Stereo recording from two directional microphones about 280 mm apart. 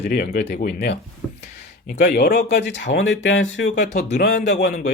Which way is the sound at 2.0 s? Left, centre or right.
Left.